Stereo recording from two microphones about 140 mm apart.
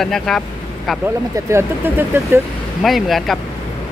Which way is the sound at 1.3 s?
20° right (ahead or behind).